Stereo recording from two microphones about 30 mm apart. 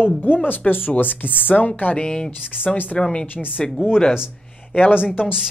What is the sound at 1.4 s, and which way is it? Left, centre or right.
Speech, left.